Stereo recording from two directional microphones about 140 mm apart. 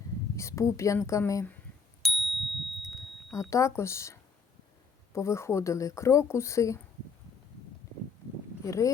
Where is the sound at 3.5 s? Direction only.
20° left (ahead or behind).